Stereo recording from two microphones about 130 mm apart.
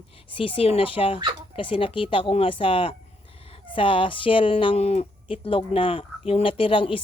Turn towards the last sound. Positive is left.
turn(degrees=40)  # may be behind; listen again after turning